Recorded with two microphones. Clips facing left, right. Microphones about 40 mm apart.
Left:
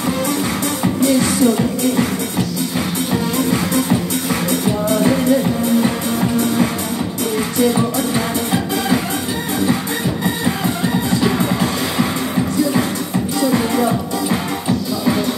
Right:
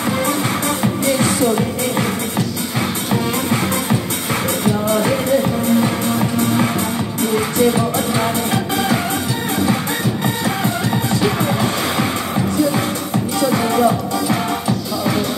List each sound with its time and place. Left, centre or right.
1.1 s music: right
11.2 s music: centre
13.5 s music: right